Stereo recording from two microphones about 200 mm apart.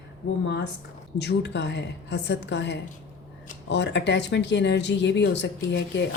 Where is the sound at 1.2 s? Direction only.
55° left (ahead or behind).